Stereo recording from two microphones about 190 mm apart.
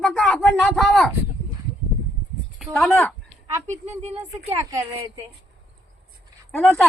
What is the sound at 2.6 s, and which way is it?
Speech, centre (ahead or behind).